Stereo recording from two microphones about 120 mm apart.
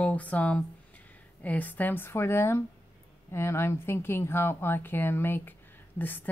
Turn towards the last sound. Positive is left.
turn(degrees=15)  # may be behind; listen again after turning